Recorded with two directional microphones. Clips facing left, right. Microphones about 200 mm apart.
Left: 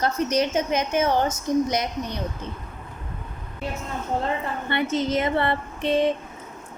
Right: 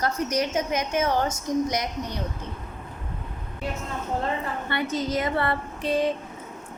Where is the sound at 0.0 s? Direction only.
25° left (ahead or behind).